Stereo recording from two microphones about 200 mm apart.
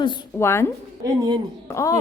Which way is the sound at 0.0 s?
20° left (ahead or behind).